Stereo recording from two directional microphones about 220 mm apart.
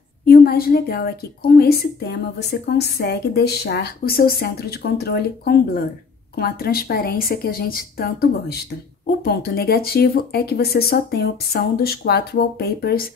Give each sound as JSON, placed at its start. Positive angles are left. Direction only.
{"t": 0.2, "sound": "a woman's voice", "side_deg": 45}